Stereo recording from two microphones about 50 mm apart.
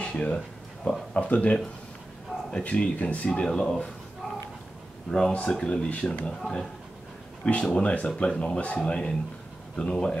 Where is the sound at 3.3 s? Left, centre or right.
Centre.